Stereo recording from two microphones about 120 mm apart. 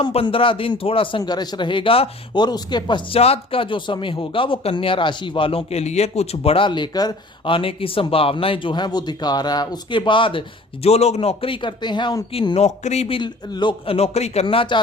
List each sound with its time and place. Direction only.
0.0 s speech: 50° left (ahead or behind)
3.2 s speech: 55° left (ahead or behind); by 7.5 s 35° left (ahead or behind)
7.5 s speech: 50° left (ahead or behind)
10.8 s speech: 60° left (ahead or behind); by 12.2 s 40° left (ahead or behind)
12.5 s speech: 65° left (ahead or behind)
13.1 s speech: 40° left (ahead or behind); by 14.4 s 65° left (ahead or behind)
14.4 s speech: 45° left (ahead or behind)